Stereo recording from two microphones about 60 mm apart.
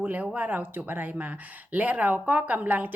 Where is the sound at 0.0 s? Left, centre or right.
Right.